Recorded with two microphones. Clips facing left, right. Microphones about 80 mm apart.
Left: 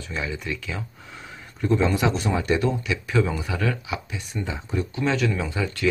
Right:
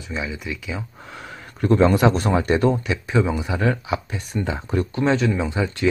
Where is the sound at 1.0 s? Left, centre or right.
Right.